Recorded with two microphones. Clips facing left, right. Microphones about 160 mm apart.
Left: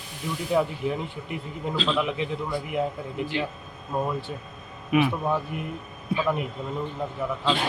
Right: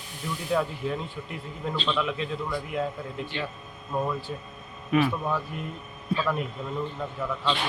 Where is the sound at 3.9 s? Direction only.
20° left (ahead or behind).